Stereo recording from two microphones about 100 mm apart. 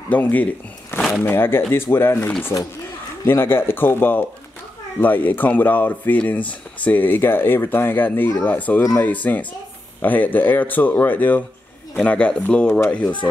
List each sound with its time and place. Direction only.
0.1 s speech: 15° left (ahead or behind)